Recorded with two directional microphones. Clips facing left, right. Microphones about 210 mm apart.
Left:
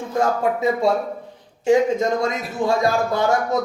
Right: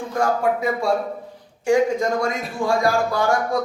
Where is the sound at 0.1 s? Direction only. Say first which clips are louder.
Left 1 dB; 20° left (ahead or behind).